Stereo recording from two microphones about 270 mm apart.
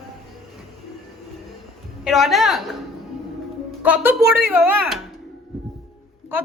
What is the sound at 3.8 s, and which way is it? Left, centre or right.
A woman's voice, centre.